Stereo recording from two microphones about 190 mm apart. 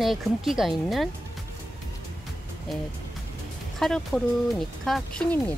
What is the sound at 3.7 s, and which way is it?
Speech, centre (ahead or behind).